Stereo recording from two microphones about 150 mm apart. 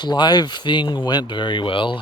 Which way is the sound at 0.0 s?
30° left (ahead or behind).